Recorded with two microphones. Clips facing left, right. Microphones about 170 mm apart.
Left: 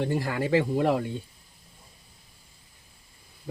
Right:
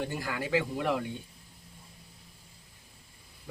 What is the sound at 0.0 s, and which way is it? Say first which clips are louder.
Speech: left 7 dB; 30° left (ahead or behind).